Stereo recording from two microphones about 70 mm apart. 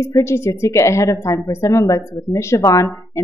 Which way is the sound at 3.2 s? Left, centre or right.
Left.